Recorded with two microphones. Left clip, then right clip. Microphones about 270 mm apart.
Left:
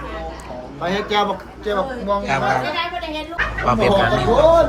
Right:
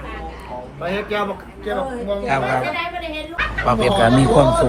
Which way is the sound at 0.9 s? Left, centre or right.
Left.